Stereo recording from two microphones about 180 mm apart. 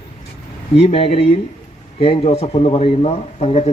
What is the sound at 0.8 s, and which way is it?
Speech, 35° left (ahead or behind).